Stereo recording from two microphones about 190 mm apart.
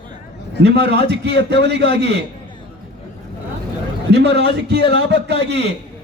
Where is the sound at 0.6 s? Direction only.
60° right (ahead or behind).